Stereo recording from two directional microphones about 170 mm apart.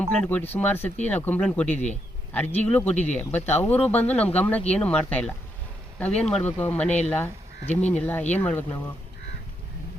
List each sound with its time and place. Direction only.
0.0 s speech: 5° left (ahead or behind)
7.9 s speech: 10° left (ahead or behind)